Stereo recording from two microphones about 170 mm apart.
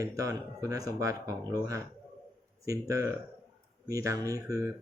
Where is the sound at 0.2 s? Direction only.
20° right (ahead or behind).